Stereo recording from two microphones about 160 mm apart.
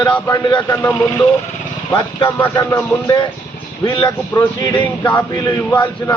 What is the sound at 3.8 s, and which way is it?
Speech, 30° left (ahead or behind).